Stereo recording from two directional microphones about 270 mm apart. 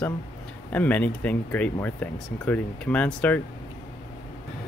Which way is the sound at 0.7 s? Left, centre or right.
Centre.